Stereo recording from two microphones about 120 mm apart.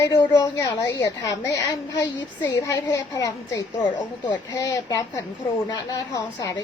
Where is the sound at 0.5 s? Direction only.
30° left (ahead or behind).